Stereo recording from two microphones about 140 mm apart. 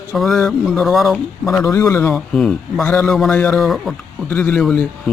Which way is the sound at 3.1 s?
5° left (ahead or behind).